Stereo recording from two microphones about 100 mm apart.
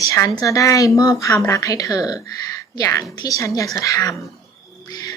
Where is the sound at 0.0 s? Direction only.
35° left (ahead or behind).